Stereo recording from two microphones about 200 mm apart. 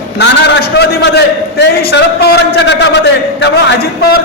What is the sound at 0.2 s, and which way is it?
A man's voice, 60° left (ahead or behind).